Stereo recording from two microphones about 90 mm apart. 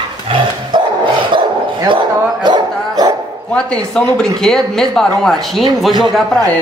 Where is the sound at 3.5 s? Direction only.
10° left (ahead or behind).